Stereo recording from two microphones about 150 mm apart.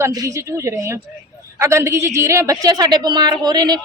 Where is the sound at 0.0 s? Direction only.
20° right (ahead or behind).